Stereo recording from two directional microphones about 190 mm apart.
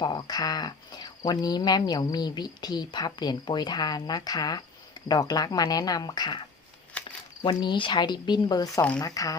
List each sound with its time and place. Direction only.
0.0 s speech: 20° left (ahead or behind)
7.0 s a sound: 5° left (ahead or behind)
7.4 s speech: 25° left (ahead or behind)